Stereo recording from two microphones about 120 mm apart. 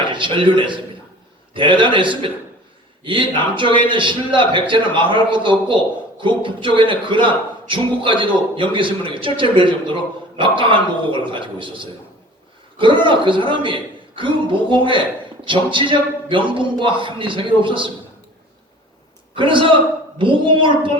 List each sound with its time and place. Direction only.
0.0 s a man's voice: 40° right (ahead or behind)
19.3 s a man's voice: 45° right (ahead or behind)